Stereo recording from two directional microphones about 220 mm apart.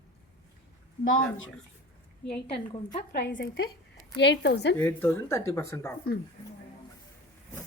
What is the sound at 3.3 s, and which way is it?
A woman's voice, 50° left (ahead or behind).